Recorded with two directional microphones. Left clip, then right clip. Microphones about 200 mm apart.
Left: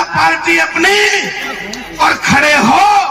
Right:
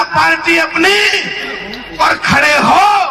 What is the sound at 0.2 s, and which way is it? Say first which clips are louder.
A man's voice: even; 25° right (ahead or behind).